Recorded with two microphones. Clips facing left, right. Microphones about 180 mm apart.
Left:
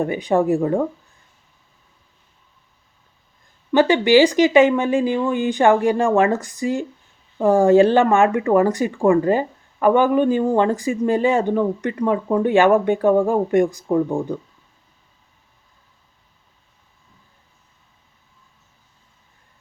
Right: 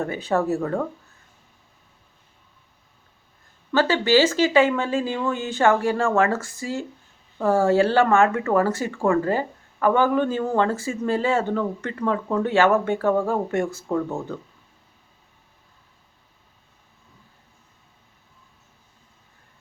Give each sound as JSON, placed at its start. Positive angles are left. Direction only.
{"t": 0.0, "sound": "speech", "side_deg": 15}
{"t": 3.7, "sound": "speech", "side_deg": 15}